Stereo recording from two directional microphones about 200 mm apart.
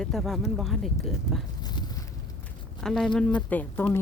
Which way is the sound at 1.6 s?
20° left (ahead or behind).